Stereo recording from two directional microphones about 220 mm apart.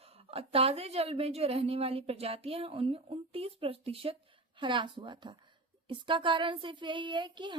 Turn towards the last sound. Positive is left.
turn(degrees=-20)  # may be behind; listen again after turning